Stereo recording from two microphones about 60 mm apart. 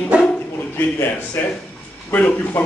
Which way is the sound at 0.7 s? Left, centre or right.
Left.